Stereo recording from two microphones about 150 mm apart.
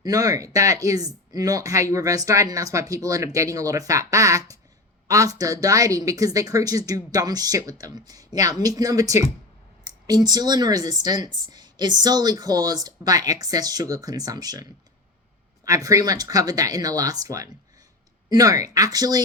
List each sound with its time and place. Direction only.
0.0 s speech: 25° right (ahead or behind)